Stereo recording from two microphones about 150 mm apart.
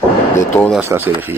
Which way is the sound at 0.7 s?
15° right (ahead or behind).